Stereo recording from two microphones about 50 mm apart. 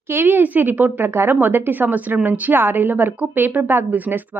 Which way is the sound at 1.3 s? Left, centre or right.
Right.